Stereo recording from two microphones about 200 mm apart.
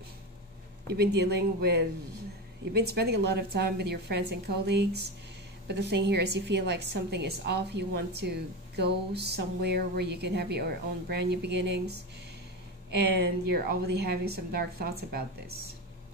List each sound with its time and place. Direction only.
0.9 s a woman's voice: 55° right (ahead or behind)